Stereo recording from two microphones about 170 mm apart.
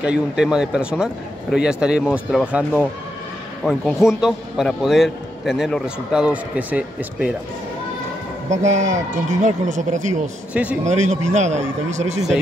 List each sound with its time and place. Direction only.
0.0 s a man's voice: 5° right (ahead or behind)
8.5 s a man's voice: 45° right (ahead or behind)
10.5 s a man's voice: 5° right (ahead or behind)
10.8 s a man's voice: 45° right (ahead or behind)